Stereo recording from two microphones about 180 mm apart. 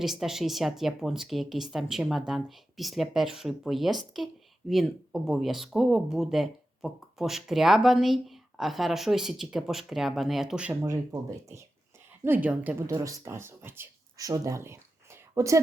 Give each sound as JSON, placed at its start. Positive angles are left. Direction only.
{"t": 0.0, "sound": "speech", "side_deg": 0}
{"t": 10.8, "sound": "a woman's voice", "side_deg": -15}